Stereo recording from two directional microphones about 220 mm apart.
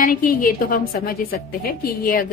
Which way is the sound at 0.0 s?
40° left (ahead or behind).